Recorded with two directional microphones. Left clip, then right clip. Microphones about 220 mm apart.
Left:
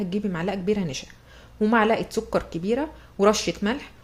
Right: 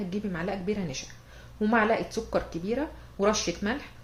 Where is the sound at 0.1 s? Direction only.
40° left (ahead or behind).